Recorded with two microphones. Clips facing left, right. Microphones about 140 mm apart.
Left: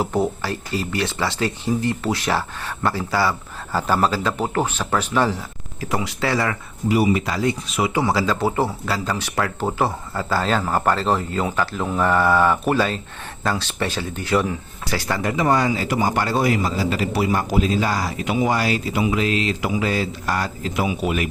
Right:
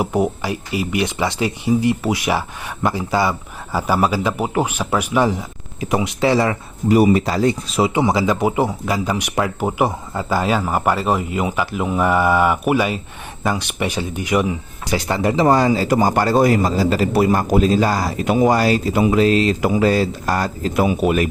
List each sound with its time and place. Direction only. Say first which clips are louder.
0.0 s speech: right 2 dB; 15° right (ahead or behind)
6.8 s speech: right 5 dB; 45° right (ahead or behind)